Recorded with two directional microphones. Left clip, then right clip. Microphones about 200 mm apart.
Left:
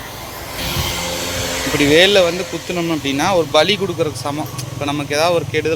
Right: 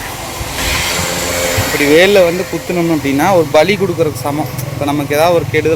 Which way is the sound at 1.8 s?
Centre (ahead or behind).